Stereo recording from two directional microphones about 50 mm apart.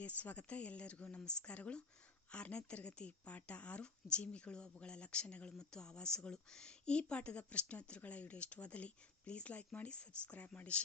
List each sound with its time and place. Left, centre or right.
0.2 s speech: left